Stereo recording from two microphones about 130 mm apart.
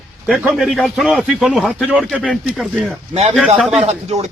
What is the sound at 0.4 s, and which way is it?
A man's voice, centre (ahead or behind).